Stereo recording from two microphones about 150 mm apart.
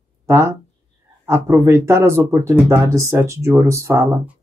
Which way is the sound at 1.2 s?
15° right (ahead or behind).